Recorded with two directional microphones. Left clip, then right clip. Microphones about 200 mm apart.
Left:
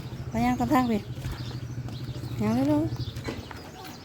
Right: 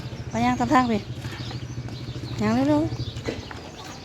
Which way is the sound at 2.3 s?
5° left (ahead or behind).